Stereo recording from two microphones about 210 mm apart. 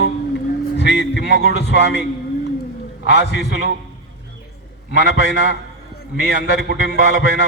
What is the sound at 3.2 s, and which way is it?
Speech, 50° left (ahead or behind).